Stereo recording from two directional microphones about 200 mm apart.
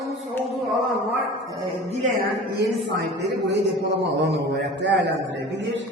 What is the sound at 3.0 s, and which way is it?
A man's voice, 55° right (ahead or behind).